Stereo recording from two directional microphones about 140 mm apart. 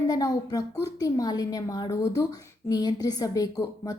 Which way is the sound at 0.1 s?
25° left (ahead or behind).